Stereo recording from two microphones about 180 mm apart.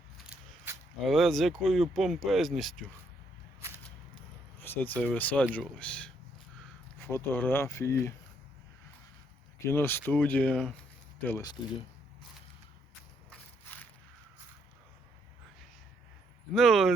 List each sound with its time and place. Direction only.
1.0 s speech: centre (ahead or behind)
4.6 s speech: 10° left (ahead or behind)
9.6 s speech: 10° left (ahead or behind)
11.3 s speech: 15° left (ahead or behind)
16.5 s speech: centre (ahead or behind)